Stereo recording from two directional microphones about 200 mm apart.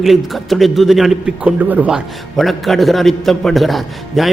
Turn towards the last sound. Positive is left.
turn(degrees=0)  # may be behind; listen again after turning